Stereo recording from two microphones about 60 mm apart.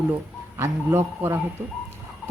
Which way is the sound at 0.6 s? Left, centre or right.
Right.